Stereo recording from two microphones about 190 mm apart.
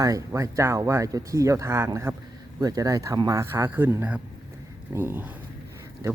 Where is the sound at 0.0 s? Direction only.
20° right (ahead or behind).